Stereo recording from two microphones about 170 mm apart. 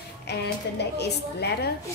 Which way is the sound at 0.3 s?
75° left (ahead or behind).